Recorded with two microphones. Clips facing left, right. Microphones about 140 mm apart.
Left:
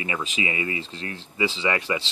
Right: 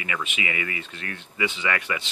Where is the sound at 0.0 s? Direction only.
30° left (ahead or behind).